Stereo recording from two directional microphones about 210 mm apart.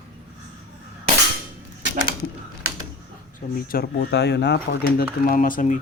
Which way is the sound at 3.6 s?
50° left (ahead or behind).